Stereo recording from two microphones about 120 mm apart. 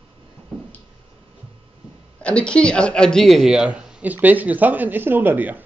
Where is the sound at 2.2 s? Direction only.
10° left (ahead or behind); by 5.6 s 15° right (ahead or behind).